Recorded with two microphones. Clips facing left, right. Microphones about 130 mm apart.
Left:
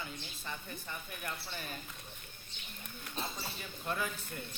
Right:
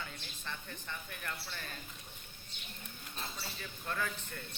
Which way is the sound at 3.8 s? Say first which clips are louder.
Left 1 dB; 15° left (ahead or behind).